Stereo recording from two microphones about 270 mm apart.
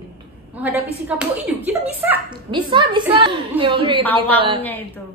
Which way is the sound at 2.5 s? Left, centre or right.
Centre.